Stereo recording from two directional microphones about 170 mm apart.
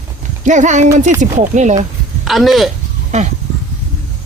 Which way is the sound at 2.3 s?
Centre (ahead or behind).